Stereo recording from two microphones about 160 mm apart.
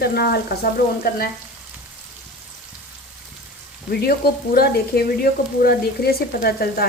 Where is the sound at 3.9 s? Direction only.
75° left (ahead or behind).